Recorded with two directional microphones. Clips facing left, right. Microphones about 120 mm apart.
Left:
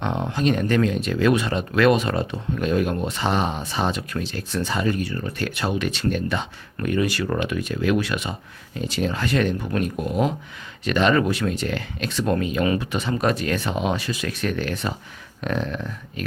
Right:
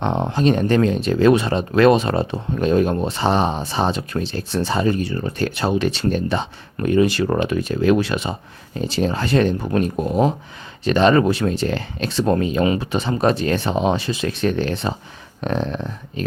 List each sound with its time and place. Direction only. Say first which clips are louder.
0.0 s speech: right 4 dB; 30° right (ahead or behind)